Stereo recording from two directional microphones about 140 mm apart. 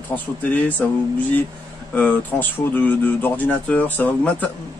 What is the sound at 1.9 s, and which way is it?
Speech, 10° left (ahead or behind).